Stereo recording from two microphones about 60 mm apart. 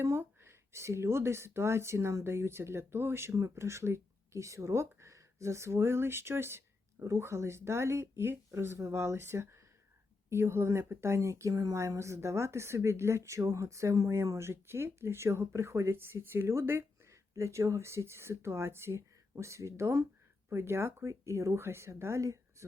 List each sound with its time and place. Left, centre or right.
0.0 s speech: right
3.3 s speech: right
11.5 s speech: right
11.8 s speech: right
16.0 s speech: right